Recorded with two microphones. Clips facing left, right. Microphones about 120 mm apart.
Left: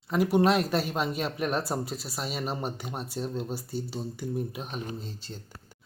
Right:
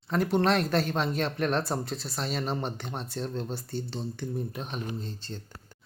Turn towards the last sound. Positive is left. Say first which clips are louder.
# left 1 dB
turn(degrees=5)  # may be behind; listen again after turning